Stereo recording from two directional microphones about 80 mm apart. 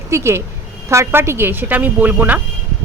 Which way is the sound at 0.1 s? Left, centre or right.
Right.